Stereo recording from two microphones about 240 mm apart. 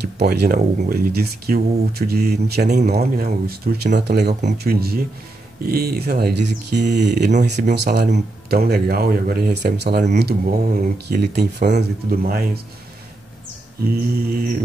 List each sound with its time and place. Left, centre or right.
0.0 s speech: right
13.8 s speech: right